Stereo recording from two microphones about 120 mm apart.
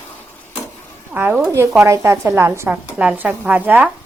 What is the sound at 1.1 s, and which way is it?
A woman's voice, 15° right (ahead or behind).